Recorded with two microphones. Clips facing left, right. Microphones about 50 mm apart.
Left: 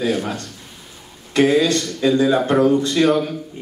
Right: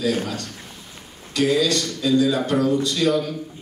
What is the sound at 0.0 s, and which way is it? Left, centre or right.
Speech, left.